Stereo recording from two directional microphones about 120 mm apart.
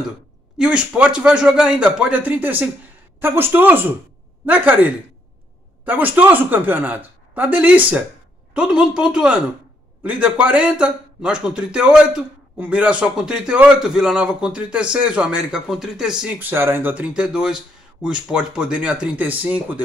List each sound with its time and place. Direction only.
0.6 s a man's voice: 10° right (ahead or behind)
5.9 s a man's voice: 15° right (ahead or behind)